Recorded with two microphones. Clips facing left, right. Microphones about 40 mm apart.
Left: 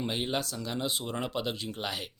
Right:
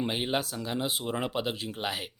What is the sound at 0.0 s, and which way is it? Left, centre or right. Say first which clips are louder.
Speech: right 2 dB; centre.